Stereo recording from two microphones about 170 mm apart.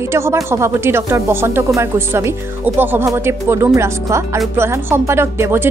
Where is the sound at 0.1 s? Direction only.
15° right (ahead or behind).